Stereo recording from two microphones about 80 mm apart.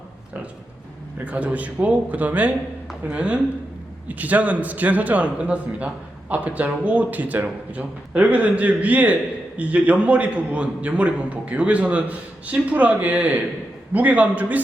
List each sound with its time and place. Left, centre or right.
1.2 s a man's voice: centre